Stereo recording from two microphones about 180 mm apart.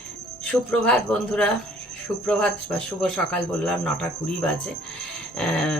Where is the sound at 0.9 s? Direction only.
5° left (ahead or behind).